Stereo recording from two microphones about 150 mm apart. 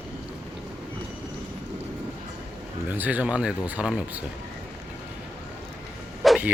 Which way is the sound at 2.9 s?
10° right (ahead or behind).